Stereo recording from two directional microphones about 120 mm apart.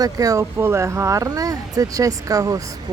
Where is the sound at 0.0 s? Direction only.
30° right (ahead or behind).